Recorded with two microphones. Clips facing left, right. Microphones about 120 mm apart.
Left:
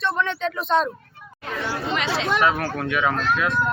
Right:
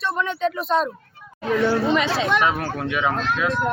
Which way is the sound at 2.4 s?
15° right (ahead or behind).